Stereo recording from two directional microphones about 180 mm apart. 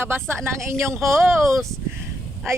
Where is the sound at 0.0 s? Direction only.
15° right (ahead or behind).